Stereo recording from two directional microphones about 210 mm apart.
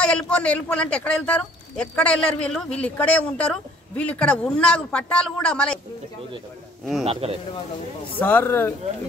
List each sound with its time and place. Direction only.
0.0 s speech: 5° left (ahead or behind)
6.8 s a man's voice: centre (ahead or behind)
7.1 s speech: 30° right (ahead or behind)
8.2 s speech: 10° left (ahead or behind)